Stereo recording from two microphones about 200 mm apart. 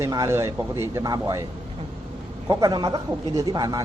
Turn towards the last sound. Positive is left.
turn(degrees=-20)  # may be behind; listen again after turning